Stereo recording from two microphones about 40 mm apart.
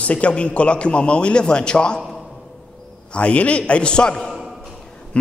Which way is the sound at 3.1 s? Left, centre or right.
Left.